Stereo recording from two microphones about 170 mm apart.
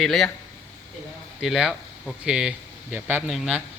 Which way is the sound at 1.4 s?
5° right (ahead or behind).